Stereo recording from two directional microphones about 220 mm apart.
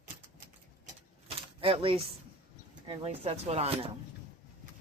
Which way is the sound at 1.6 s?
25° right (ahead or behind).